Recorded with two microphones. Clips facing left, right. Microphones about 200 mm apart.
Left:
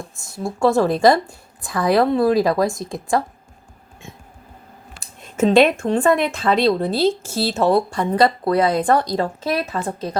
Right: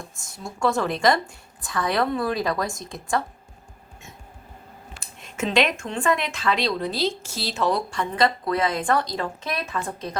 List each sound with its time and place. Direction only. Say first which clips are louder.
0.6 s speech: left 7 dB; 35° left (ahead or behind)
4.9 s speech: left 10 dB; 35° left (ahead or behind)
6.2 s speech: left 8 dB; 50° left (ahead or behind); by 10.2 s 35° left (ahead or behind)